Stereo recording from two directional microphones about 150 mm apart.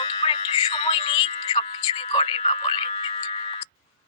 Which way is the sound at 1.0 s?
45° left (ahead or behind).